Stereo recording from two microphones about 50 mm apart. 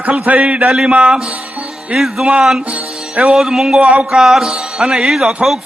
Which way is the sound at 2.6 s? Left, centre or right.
Right.